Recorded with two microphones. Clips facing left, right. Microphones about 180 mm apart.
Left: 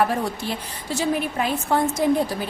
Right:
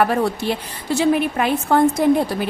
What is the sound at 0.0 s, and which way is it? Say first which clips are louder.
A woman's voice: right 4 dB; 65° right (ahead or behind).